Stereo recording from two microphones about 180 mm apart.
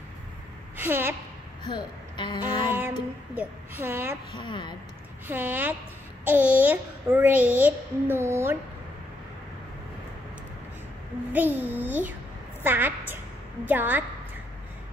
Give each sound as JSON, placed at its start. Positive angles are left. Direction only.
{"t": 0.7, "sound": "a woman's voice", "side_deg": -10}
{"t": 1.6, "sound": "speech", "side_deg": 25}
{"t": 2.7, "sound": "a child's voice", "side_deg": -10}
{"t": 4.4, "sound": "speech", "side_deg": 25}
{"t": 5.3, "sound": "a child's voice", "side_deg": -10}
{"t": 11.3, "sound": "a child's voice", "side_deg": -10}